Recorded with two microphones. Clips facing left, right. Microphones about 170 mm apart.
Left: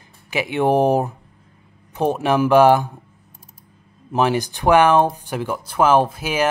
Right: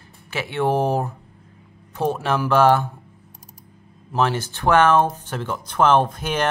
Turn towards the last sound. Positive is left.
turn(degrees=5)  # may be behind; listen again after turning